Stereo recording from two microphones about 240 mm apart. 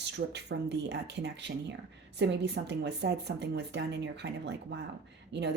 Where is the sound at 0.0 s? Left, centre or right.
Right.